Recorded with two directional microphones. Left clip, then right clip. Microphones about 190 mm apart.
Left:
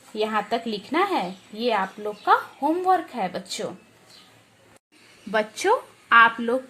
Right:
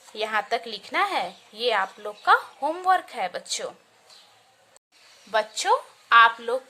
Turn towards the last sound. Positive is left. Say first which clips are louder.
# even
turn(degrees=5)  # may be behind; listen again after turning